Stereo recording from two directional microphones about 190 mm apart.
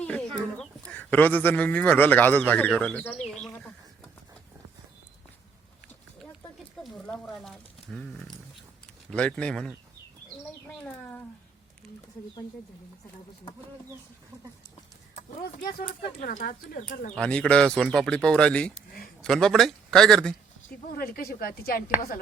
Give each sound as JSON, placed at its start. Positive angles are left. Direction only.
{"t": 0.0, "sound": "chicken", "side_deg": 5}
{"t": 0.5, "sound": "speech", "side_deg": 5}
{"t": 6.8, "sound": "a sound", "side_deg": 0}
{"t": 9.0, "sound": "speech", "side_deg": 5}
{"t": 15.1, "sound": "speech", "side_deg": 40}
{"t": 17.2, "sound": "speech", "side_deg": 5}
{"t": 20.7, "sound": "speech", "side_deg": 50}